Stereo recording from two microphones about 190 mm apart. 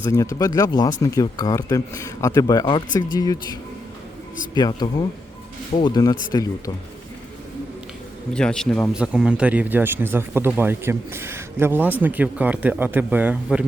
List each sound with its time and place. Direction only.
0.0 s speech: 15° left (ahead or behind)
8.3 s speech: 5° left (ahead or behind)